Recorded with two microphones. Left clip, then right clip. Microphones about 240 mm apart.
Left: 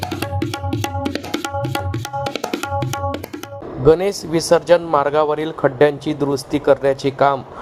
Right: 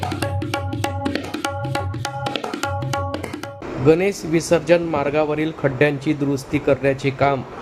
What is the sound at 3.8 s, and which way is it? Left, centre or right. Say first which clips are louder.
A man's voice: left 2 dB; left.